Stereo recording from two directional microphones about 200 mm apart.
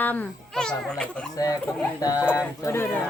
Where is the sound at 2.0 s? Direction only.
20° left (ahead or behind).